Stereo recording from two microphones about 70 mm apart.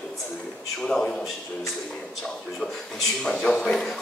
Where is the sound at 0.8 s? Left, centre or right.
Centre.